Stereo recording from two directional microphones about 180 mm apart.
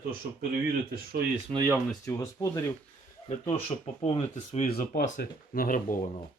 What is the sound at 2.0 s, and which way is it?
Speech, 20° left (ahead or behind).